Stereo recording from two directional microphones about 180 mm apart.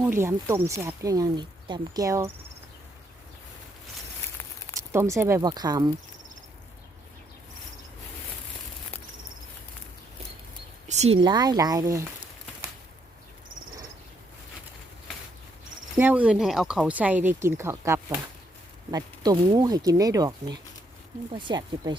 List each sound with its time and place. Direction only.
0.2 s speech: 15° right (ahead or behind)
4.9 s speech: 15° right (ahead or behind)
10.8 s a sound: 40° right (ahead or behind)
11.2 s speech: 25° right (ahead or behind)
16.0 s speech: 10° right (ahead or behind); by 21.9 s 25° right (ahead or behind)